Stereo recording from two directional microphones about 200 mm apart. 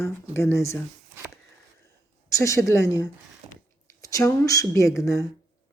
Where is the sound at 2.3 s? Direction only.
15° left (ahead or behind).